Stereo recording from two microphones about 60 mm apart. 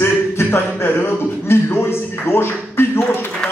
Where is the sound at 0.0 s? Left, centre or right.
Left.